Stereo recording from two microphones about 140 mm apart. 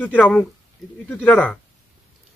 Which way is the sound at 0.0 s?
5° left (ahead or behind).